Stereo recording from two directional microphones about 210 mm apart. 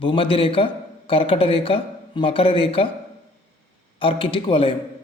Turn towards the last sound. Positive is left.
turn(degrees=25)  # may be behind; listen again after turning